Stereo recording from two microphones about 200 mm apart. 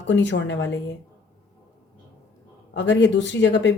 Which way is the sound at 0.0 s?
65° left (ahead or behind).